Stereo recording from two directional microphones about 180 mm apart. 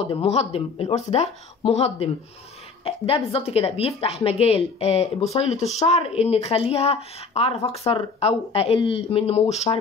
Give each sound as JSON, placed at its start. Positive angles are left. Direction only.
{"t": 0.0, "sound": "a woman's voice", "side_deg": 35}